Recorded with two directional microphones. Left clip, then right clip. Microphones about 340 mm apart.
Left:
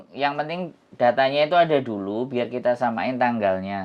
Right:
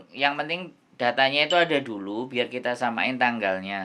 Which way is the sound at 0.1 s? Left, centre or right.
Left.